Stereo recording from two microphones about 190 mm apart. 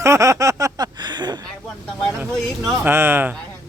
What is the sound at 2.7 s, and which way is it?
Speech, 10° right (ahead or behind).